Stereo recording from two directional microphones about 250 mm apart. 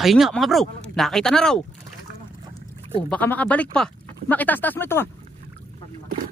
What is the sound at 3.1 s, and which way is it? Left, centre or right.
Speech, centre.